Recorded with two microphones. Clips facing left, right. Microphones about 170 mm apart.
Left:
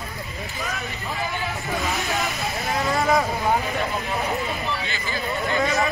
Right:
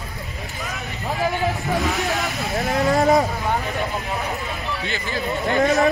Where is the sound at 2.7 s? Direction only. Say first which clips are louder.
Right 4 dB; 40° right (ahead or behind).